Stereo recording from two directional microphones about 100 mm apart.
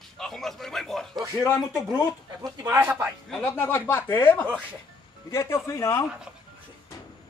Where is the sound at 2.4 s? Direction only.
25° right (ahead or behind).